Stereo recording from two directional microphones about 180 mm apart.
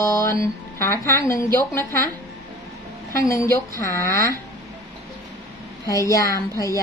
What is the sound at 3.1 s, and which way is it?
A woman's voice, 15° left (ahead or behind).